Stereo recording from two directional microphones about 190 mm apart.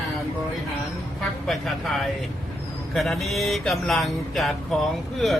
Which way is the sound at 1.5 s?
Centre (ahead or behind).